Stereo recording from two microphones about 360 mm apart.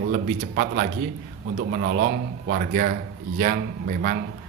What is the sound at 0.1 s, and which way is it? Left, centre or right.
A man's voice, right.